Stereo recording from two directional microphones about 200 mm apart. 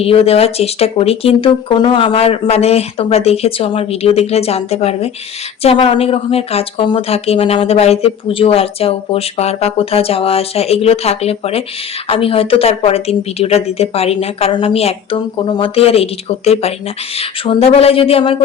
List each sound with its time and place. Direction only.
0.0 s speech: 30° left (ahead or behind)